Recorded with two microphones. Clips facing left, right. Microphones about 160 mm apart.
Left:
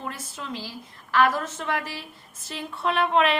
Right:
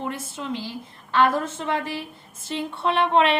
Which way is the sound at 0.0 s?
25° right (ahead or behind).